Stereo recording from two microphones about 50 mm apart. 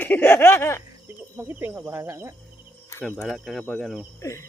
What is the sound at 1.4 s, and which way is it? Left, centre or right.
Speech, right.